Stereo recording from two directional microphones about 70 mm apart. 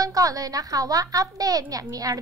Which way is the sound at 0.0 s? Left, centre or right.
Right.